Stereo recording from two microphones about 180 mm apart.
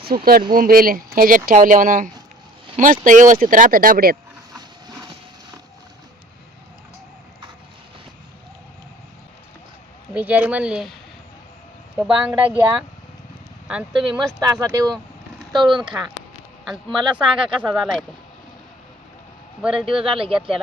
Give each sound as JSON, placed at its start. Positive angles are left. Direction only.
{"t": 0.0, "sound": "speech", "side_deg": -55}
{"t": 10.2, "sound": "speech", "side_deg": -10}
{"t": 11.9, "sound": "speech", "side_deg": -5}
{"t": 14.4, "sound": "speech", "side_deg": -20}
{"t": 17.0, "sound": "speech", "side_deg": -25}
{"t": 17.6, "sound": "speech", "side_deg": 0}
{"t": 19.6, "sound": "speech", "side_deg": -5}
{"t": 20.1, "sound": "speech", "side_deg": -30}